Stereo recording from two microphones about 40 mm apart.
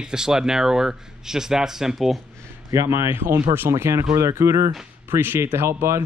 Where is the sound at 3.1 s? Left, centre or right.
Right.